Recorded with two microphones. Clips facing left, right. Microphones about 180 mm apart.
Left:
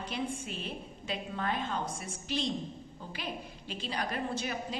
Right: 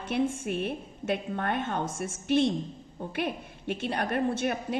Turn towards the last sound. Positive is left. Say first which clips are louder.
# right 7 dB
turn(degrees=-60)  # may be behind; listen again after turning